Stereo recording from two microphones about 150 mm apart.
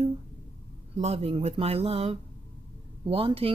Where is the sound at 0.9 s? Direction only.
45° right (ahead or behind).